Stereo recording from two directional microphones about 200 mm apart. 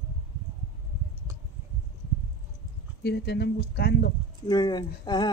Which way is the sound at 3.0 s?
55° left (ahead or behind).